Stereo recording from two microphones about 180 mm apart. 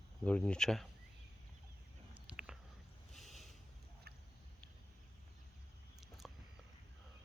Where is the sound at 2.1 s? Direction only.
5° right (ahead or behind).